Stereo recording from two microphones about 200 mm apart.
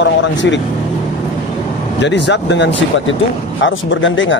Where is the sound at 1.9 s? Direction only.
60° left (ahead or behind).